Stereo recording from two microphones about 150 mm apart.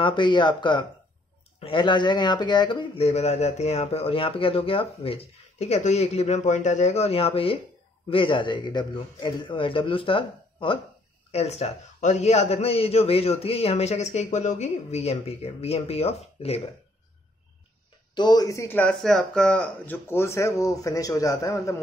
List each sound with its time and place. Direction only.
0.0 s a man's voice: 30° left (ahead or behind)
3.0 s a man's voice: 45° left (ahead or behind)
18.1 s speech: 30° left (ahead or behind)